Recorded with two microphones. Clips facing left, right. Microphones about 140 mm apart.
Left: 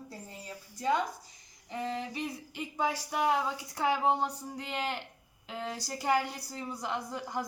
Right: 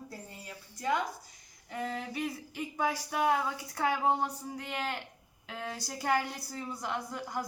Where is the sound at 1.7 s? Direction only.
15° left (ahead or behind).